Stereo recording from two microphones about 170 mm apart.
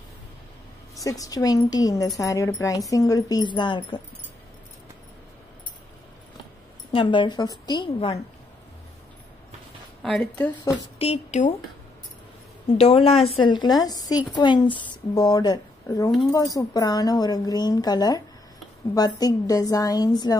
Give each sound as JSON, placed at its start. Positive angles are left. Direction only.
{"t": 1.0, "sound": "a woman's voice", "side_deg": 20}
{"t": 6.9, "sound": "a woman's voice", "side_deg": 30}
{"t": 10.0, "sound": "a woman's voice", "side_deg": 5}
{"t": 11.0, "sound": "a woman's voice", "side_deg": 40}
{"t": 12.7, "sound": "a woman's voice", "side_deg": 35}